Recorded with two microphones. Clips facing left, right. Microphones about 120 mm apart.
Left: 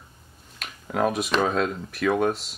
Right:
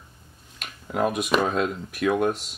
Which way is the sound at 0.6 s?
Centre (ahead or behind).